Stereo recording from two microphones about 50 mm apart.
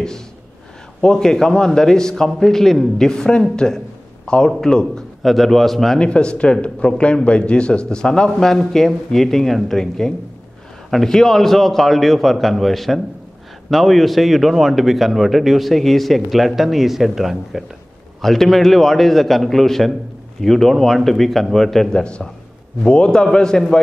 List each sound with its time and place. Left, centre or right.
1.0 s a man's voice: centre
5.2 s a man's voice: centre
5.9 s a man's voice: centre
22.8 s a man's voice: centre